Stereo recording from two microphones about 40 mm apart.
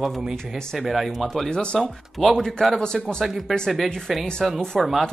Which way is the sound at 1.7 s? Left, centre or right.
Centre.